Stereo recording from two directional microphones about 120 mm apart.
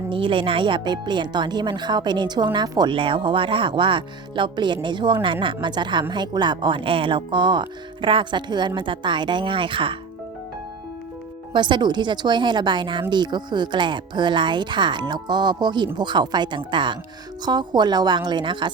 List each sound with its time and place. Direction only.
0.1 s speech: 45° right (ahead or behind)
11.5 s speech: 40° right (ahead or behind)